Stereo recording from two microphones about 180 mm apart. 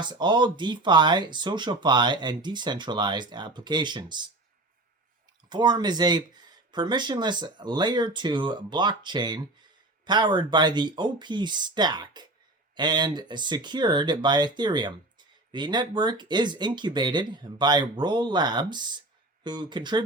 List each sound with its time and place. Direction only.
0.0 s speech: 25° right (ahead or behind)
5.5 s speech: 25° right (ahead or behind)